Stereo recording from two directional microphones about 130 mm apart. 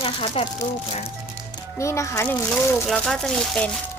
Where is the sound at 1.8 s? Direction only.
20° left (ahead or behind).